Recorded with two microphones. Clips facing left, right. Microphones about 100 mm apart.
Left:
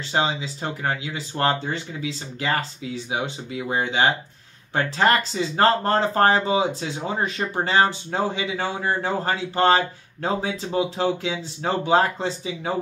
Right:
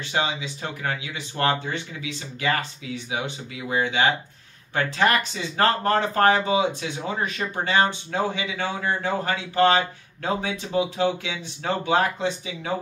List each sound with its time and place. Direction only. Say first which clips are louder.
0.1 s speech: left 3 dB; 30° left (ahead or behind)